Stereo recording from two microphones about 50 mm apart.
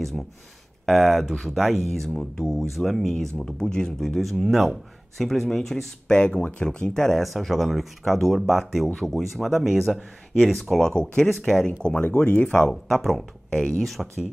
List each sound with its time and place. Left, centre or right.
0.2 s speech: centre
2.7 s speech: centre
3.3 s speech: centre
4.0 s speech: centre
6.1 s speech: centre
7.2 s speech: centre
10.9 s speech: centre
11.2 s speech: centre
11.9 s speech: left
12.8 s speech: centre
13.5 s speech: centre